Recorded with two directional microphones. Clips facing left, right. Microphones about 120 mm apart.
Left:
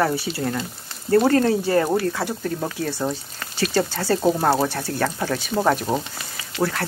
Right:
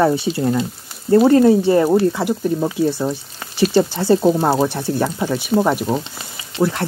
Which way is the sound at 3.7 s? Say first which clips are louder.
Right 6 dB; 15° right (ahead or behind).